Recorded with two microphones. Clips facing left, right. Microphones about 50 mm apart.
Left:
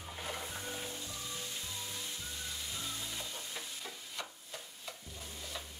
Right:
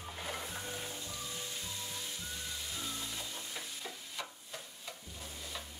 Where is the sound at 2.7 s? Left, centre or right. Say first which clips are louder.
Right 1 dB; centre.